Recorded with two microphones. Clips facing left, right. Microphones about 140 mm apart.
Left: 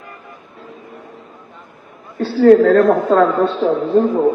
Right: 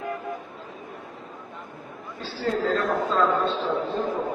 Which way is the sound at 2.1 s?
65° left (ahead or behind).